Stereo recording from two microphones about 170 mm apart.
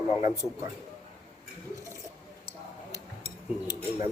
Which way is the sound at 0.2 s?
20° right (ahead or behind).